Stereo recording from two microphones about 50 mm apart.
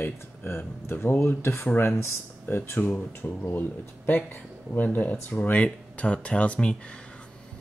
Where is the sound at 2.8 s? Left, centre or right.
Left.